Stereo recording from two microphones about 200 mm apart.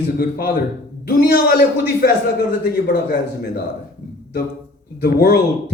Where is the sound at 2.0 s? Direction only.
55° left (ahead or behind).